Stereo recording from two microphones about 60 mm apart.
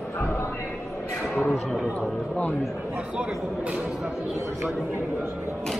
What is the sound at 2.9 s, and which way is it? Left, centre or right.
Speech, centre.